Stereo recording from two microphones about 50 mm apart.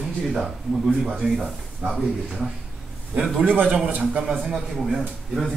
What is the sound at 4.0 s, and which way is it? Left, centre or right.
A man's voice, centre.